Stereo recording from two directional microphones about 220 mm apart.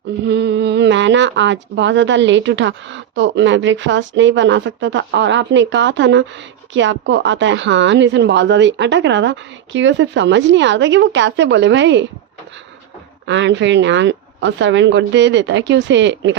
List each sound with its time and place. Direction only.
0.3 s a woman's voice: 50° right (ahead or behind)
13.2 s a woman's voice: 55° right (ahead or behind)